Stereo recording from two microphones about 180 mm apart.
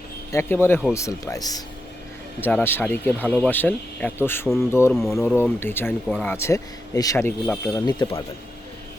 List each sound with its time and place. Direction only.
0.3 s speech: 15° left (ahead or behind)
2.4 s speech: 10° left (ahead or behind)
7.9 s speech: 20° left (ahead or behind)